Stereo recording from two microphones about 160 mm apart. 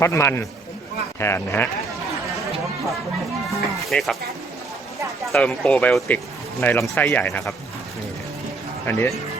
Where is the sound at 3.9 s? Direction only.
Centre (ahead or behind).